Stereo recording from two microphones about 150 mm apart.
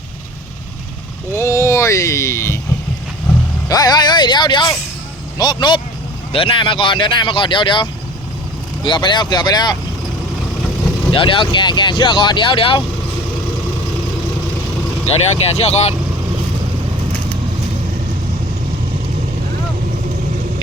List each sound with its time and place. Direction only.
1.3 s a sound: 20° left (ahead or behind)
3.7 s speech: 25° left (ahead or behind)
11.1 s speech: 35° left (ahead or behind)
15.0 s speech: 45° left (ahead or behind)